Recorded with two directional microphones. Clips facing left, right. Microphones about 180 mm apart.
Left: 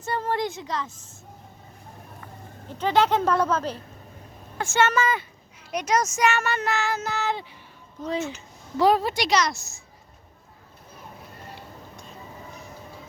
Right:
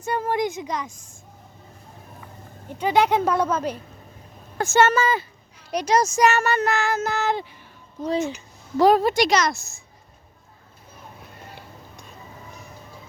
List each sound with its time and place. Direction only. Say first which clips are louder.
0.0 s speech: right 3 dB; 15° right (ahead or behind)
2.7 s speech: right 2 dB; 10° right (ahead or behind)
4.5 s speech: right 4 dB; 40° right (ahead or behind)
8.8 s a woman's voice: right 4 dB; 45° right (ahead or behind)